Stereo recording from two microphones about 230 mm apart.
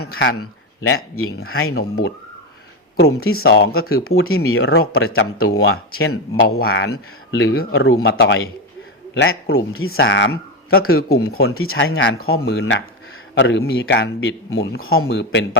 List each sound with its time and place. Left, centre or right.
0.0 s speech: left
1.7 s speech: left
3.2 s speech: left
3.4 s speech: left
7.7 s speech: left
10.0 s speech: left
12.5 s speech: left